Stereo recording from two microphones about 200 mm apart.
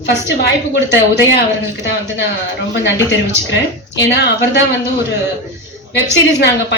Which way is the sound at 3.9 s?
60° left (ahead or behind).